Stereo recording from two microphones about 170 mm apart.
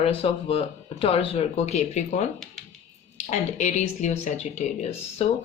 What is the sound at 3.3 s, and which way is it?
Speech, 40° left (ahead or behind).